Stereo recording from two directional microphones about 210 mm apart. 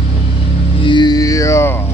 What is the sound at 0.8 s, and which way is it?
Music, 20° left (ahead or behind).